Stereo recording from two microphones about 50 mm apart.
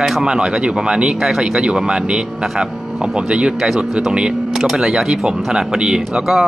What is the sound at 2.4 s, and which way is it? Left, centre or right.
Speech, centre.